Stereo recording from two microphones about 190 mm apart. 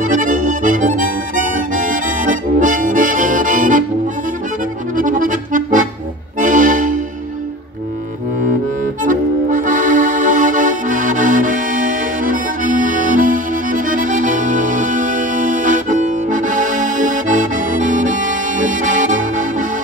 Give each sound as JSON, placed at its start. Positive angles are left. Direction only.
{"t": 0.0, "sound": "music", "side_deg": -45}
{"t": 4.9, "sound": "accordion", "side_deg": -45}
{"t": 9.0, "sound": "accordion", "side_deg": -45}